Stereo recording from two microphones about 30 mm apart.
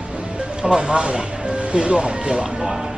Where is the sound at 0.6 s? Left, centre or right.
Right.